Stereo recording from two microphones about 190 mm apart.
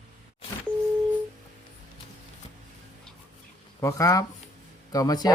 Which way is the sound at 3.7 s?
15° left (ahead or behind).